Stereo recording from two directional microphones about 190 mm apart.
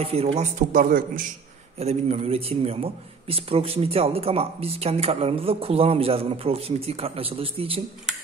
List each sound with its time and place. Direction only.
0.0 s a man's voice: 30° right (ahead or behind); by 1.2 s 45° right (ahead or behind)
1.8 s a man's voice: 35° right (ahead or behind)